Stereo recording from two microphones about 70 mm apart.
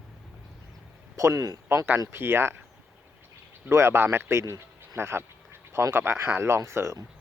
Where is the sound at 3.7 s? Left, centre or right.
Right.